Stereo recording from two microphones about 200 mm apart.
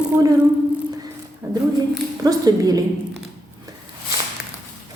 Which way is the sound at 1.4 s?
15° right (ahead or behind).